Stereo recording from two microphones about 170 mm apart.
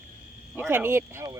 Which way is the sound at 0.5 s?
15° right (ahead or behind).